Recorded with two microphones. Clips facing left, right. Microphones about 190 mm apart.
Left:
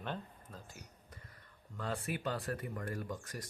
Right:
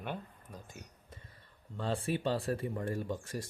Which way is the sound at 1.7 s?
30° right (ahead or behind).